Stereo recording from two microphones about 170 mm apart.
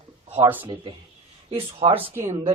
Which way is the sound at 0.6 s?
30° right (ahead or behind).